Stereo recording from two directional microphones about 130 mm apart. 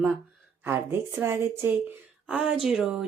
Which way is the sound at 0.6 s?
20° right (ahead or behind).